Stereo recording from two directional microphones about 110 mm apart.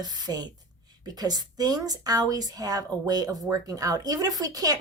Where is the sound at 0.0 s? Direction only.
35° right (ahead or behind).